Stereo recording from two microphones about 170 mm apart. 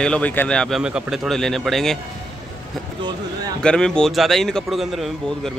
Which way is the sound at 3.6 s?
5° left (ahead or behind).